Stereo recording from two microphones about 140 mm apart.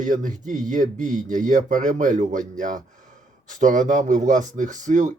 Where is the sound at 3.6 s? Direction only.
65° right (ahead or behind).